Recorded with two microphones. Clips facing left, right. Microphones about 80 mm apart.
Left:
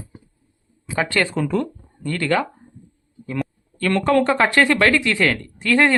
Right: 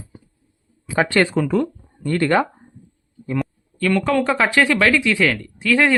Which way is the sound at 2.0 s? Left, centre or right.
Right.